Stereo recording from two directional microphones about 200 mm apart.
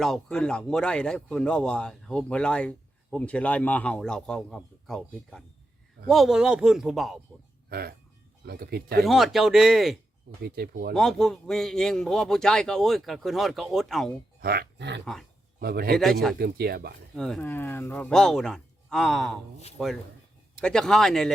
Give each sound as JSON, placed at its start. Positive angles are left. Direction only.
{"t": 0.0, "sound": "speech", "side_deg": 5}
{"t": 7.7, "sound": "speech", "side_deg": -50}
{"t": 9.0, "sound": "speech", "side_deg": 0}
{"t": 10.4, "sound": "speech", "side_deg": -50}
{"t": 10.9, "sound": "speech", "side_deg": 0}
{"t": 14.4, "sound": "speech", "side_deg": -50}
{"t": 17.2, "sound": "speech", "side_deg": 0}